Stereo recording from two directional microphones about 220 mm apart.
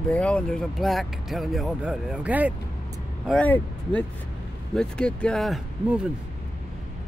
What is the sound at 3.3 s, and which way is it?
Speech, 5° left (ahead or behind).